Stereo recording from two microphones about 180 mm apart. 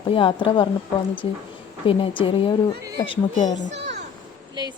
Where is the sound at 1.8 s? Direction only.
30° left (ahead or behind).